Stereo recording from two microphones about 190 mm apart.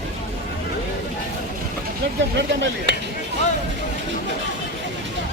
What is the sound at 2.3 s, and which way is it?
Speech, 70° right (ahead or behind).